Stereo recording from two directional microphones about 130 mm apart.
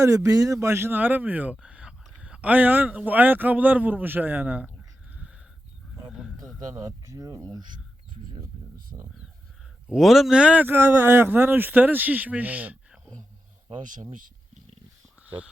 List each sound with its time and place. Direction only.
0.0 s speech: 20° right (ahead or behind)
6.1 s a sound: 5° right (ahead or behind)
6.7 s speech: 25° right (ahead or behind)
9.8 s speech: 5° right (ahead or behind)
13.8 s speech: 90° right